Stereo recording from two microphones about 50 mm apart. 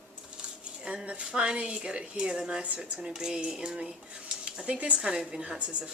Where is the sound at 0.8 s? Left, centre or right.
Right.